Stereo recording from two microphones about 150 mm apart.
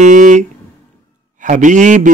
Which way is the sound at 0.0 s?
55° right (ahead or behind).